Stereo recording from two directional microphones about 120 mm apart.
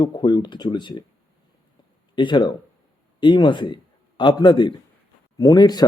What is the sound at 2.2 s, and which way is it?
A man's voice, 40° left (ahead or behind).